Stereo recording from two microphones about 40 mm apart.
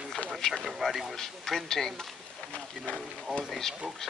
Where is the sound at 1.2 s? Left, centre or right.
Centre.